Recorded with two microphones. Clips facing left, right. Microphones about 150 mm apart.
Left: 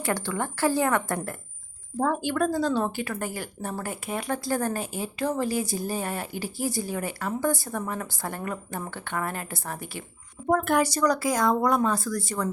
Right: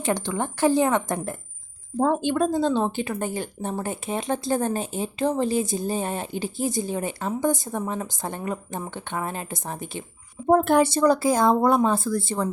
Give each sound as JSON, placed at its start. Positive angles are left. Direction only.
{"t": 0.0, "sound": "speech", "side_deg": -20}